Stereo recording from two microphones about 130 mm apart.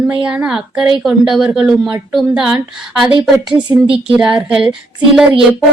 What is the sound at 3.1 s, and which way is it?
Speech, 40° right (ahead or behind).